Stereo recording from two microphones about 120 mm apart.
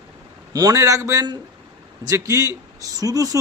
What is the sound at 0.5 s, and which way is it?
A man's voice, 30° right (ahead or behind).